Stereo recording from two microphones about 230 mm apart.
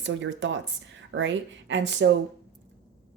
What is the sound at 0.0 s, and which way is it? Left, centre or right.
A woman's voice, right.